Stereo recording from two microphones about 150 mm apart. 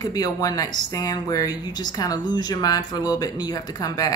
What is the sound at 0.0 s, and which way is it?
Speech, 25° left (ahead or behind).